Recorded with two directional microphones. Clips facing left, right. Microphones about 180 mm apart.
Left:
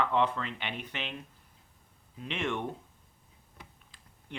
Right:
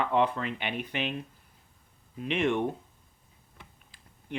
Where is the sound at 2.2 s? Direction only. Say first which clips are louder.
Right 7 dB; 15° right (ahead or behind).